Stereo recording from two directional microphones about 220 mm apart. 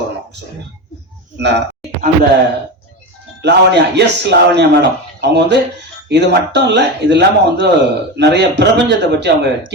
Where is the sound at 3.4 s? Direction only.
50° right (ahead or behind).